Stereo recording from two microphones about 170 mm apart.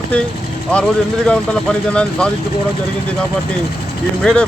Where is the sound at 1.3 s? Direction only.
5° left (ahead or behind).